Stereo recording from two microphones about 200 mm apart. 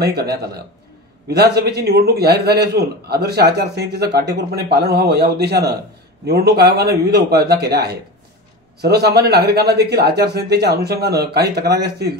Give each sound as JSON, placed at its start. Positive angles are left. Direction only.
{"t": 0.1, "sound": "a man's voice", "side_deg": -55}